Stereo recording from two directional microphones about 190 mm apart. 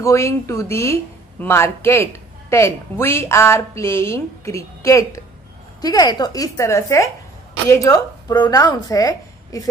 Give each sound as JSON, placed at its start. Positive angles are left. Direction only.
{"t": 0.0, "sound": "a woman's voice", "side_deg": 15}